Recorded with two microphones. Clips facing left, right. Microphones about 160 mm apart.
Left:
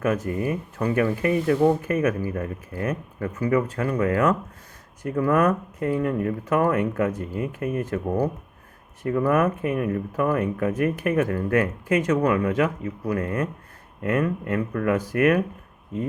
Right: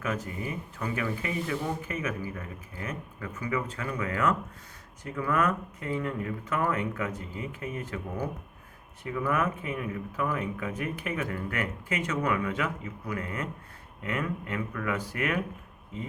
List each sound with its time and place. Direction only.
0.0 s speech: 55° left (ahead or behind)